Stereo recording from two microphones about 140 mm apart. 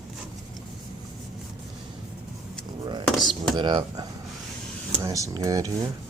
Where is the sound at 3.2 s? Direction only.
Centre (ahead or behind).